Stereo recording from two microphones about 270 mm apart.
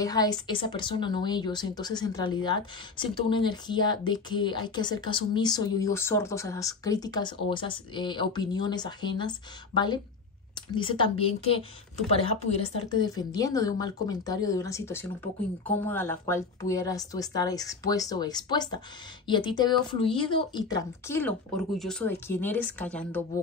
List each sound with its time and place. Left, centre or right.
0.0 s speech: centre
10.7 s a woman's voice: centre